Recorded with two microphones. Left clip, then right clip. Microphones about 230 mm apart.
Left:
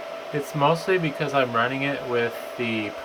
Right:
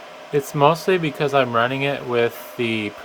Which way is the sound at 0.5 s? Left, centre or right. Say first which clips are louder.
Right 4 dB; right.